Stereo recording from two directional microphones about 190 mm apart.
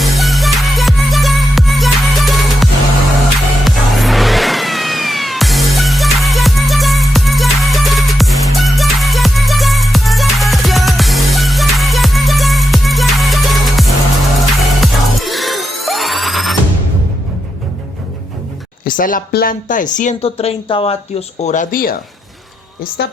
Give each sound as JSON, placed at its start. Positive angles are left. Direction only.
{"t": 0.0, "sound": "music", "side_deg": 0}
{"t": 18.9, "sound": "speech", "side_deg": 45}
{"t": 23.0, "sound": "a woman's voice", "side_deg": 60}